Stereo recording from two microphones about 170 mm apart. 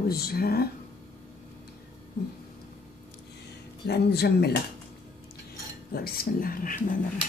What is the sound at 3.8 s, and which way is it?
Speech, 75° left (ahead or behind).